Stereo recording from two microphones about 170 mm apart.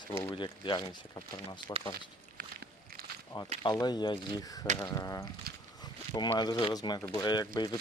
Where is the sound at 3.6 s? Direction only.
25° left (ahead or behind).